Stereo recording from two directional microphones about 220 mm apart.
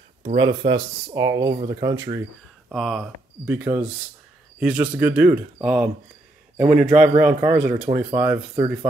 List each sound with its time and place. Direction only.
0.4 s speech: 20° right (ahead or behind)
2.7 s speech: centre (ahead or behind)